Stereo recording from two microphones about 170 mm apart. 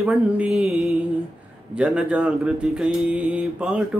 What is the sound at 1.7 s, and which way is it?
Mantra, 5° right (ahead or behind).